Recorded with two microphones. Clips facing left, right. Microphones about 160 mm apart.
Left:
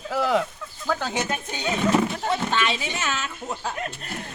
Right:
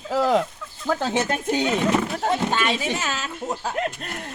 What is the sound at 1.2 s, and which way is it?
Speech, 60° right (ahead or behind).